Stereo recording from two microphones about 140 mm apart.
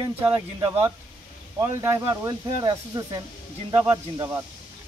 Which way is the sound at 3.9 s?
20° right (ahead or behind).